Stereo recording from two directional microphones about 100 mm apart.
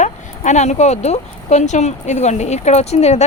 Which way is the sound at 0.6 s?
90° left.